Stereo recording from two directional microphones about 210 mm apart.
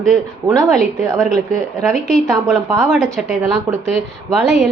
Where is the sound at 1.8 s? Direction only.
Centre (ahead or behind).